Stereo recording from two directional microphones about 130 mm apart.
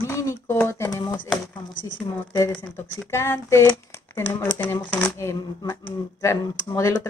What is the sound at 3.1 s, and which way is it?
Speech, 20° left (ahead or behind).